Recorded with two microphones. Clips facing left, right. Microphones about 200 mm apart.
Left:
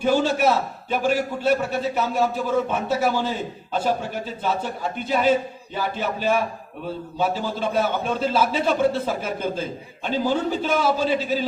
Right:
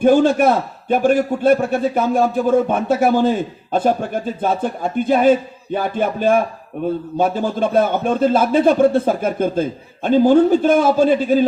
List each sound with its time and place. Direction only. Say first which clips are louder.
0.0 s a man's voice: right 7 dB; 50° right (ahead or behind)